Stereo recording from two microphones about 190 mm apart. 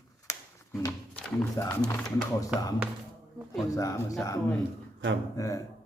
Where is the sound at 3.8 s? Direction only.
15° left (ahead or behind).